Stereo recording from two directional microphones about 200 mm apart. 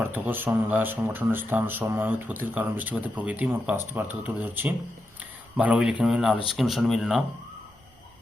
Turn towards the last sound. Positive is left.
turn(degrees=0)  # may be behind; listen again after turning